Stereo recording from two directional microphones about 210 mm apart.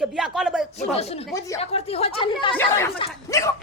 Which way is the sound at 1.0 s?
30° left (ahead or behind).